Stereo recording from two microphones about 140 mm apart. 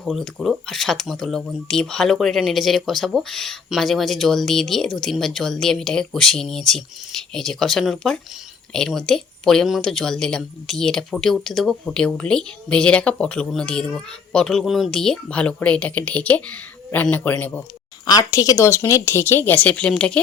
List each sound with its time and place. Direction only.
0.0 s speech: centre (ahead or behind)
18.0 s speech: 30° left (ahead or behind); by 20.1 s 5° left (ahead or behind)